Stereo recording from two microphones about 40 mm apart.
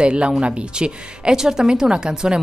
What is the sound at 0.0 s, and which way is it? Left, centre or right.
A woman's voice, right.